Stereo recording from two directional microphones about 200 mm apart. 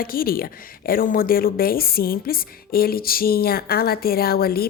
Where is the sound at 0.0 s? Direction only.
45° left (ahead or behind).